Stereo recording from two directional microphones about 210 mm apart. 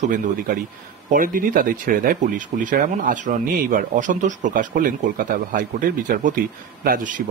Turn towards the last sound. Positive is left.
turn(degrees=-40)  # may be behind; listen again after turning